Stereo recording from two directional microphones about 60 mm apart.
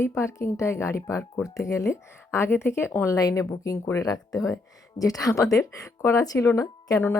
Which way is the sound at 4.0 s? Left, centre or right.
Left.